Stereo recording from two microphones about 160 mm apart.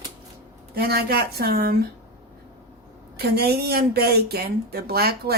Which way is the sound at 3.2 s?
80° right.